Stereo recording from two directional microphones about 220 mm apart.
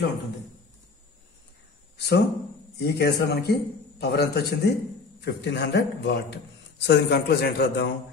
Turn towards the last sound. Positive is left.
turn(degrees=50)  # may be behind; listen again after turning